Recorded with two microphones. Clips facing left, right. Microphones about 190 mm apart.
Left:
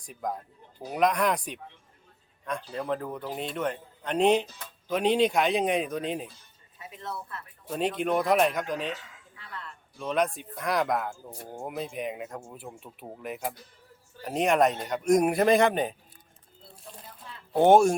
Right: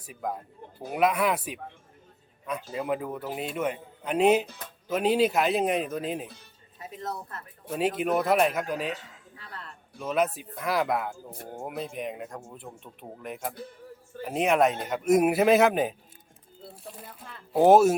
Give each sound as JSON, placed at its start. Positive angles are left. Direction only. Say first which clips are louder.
{"t": 0.0, "sound": "speech", "louder": "even", "side_deg": -5}
{"t": 2.7, "sound": "speech", "louder": "right 2 dB", "side_deg": -10}
{"t": 6.7, "sound": "a woman's voice", "louder": "right 3 dB", "side_deg": -40}
{"t": 7.7, "sound": "speech", "louder": "right 1 dB", "side_deg": -5}
{"t": 9.3, "sound": "music", "louder": "left 1 dB", "side_deg": -40}
{"t": 10.0, "sound": "speech", "louder": "right 1 dB", "side_deg": -5}
{"t": 17.5, "sound": "speech", "louder": "right 1 dB", "side_deg": -5}